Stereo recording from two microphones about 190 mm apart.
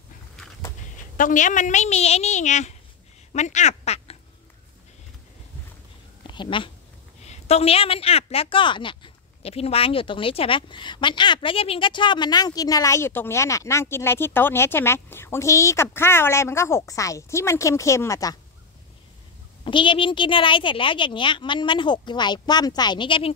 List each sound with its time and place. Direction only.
1.1 s a woman's voice: 45° left (ahead or behind)
6.2 s a sound: 25° left (ahead or behind)
7.2 s a woman's voice: 35° left (ahead or behind); by 18.4 s 15° left (ahead or behind)
19.6 s a woman's voice: 25° left (ahead or behind)